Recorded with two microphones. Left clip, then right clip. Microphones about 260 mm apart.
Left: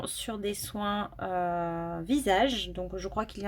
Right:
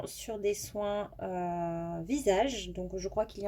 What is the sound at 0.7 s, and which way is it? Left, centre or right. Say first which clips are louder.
Speech: even; left.